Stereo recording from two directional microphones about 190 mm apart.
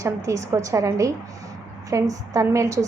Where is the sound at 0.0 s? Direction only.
15° right (ahead or behind).